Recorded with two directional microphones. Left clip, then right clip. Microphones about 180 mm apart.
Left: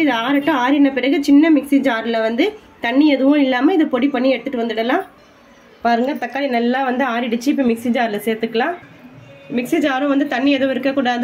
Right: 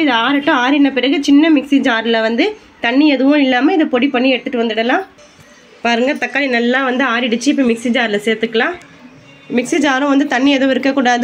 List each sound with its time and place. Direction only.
0.0 s a woman's voice: 20° right (ahead or behind); by 11.2 s 40° right (ahead or behind)